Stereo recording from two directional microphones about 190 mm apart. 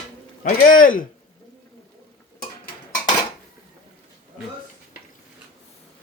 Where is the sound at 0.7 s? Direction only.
45° left (ahead or behind).